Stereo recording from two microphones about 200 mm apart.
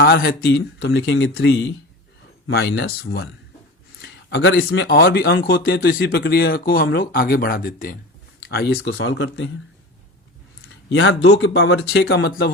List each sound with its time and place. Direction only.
0.0 s speech: 50° left (ahead or behind)
4.0 s speech: 70° left (ahead or behind)
10.6 s speech: 70° left (ahead or behind); by 12.5 s 55° left (ahead or behind)